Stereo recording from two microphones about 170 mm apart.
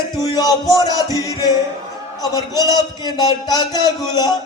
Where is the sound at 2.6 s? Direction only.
25° left (ahead or behind).